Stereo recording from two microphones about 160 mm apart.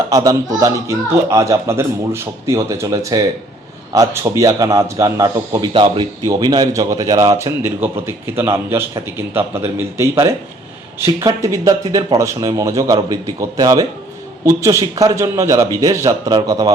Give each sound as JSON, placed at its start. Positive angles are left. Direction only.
{"t": 0.1, "sound": "a man's voice", "side_deg": -25}